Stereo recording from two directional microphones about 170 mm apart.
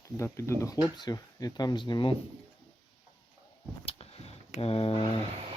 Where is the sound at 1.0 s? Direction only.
25° left (ahead or behind).